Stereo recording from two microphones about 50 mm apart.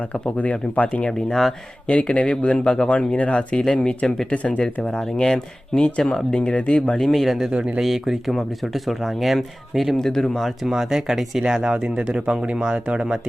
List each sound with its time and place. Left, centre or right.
0.0 s speech: left
1.3 s speech: centre
1.9 s speech: left
6.3 s speech: left
7.0 s speech: centre
7.4 s speech: centre
7.8 s speech: centre
10.7 s speech: centre